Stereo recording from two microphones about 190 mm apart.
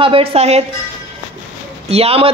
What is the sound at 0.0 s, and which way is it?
Speech, 30° right (ahead or behind).